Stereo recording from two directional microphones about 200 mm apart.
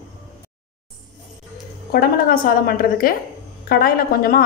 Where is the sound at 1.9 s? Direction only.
45° left (ahead or behind).